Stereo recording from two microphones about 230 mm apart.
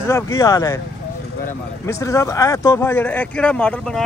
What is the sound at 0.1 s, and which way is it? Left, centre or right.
Speech, centre.